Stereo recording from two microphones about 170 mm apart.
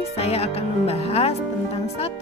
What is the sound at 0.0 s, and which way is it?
Speech, 35° left (ahead or behind).